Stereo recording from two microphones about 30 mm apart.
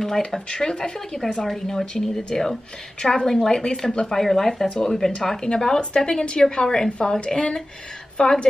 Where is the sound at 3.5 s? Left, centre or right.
Left.